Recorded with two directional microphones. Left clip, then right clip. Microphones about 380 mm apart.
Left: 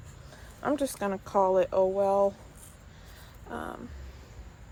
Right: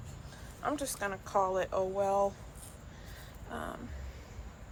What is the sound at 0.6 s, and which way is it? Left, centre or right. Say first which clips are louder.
Speech: left 5 dB; centre.